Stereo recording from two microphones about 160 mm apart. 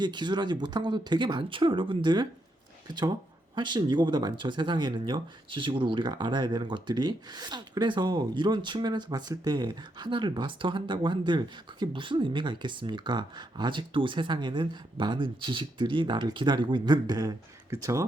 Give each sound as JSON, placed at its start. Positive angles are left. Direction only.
{"t": 0.0, "sound": "speech", "side_deg": -30}